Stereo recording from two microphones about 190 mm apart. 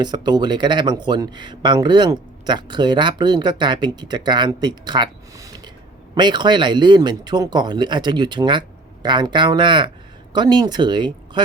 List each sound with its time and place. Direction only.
0.0 s speech: 20° right (ahead or behind)